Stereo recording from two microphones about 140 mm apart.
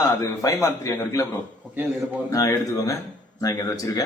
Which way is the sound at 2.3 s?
25° left (ahead or behind).